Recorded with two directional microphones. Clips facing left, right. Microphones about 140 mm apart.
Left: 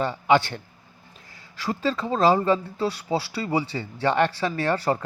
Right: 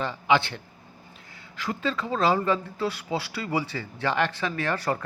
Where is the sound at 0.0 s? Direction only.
40° left (ahead or behind).